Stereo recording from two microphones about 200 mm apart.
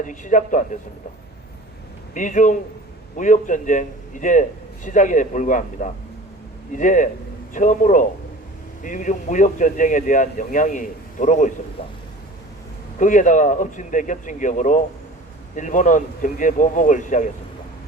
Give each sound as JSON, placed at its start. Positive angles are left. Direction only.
{"t": 0.0, "sound": "a man's voice", "side_deg": 40}
{"t": 2.1, "sound": "a man's voice", "side_deg": 40}
{"t": 11.8, "sound": "speech", "side_deg": 25}
{"t": 13.0, "sound": "a man's voice", "side_deg": 40}